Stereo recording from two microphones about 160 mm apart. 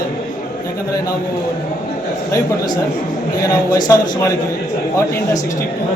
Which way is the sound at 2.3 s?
25° left (ahead or behind).